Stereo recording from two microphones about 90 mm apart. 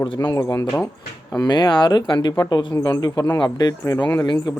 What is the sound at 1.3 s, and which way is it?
Speech, 50° left (ahead or behind).